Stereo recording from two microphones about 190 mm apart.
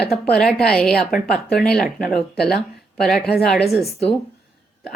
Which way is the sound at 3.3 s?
55° left (ahead or behind).